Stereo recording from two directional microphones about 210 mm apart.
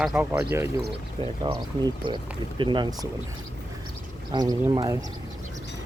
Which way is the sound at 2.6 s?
20° right (ahead or behind).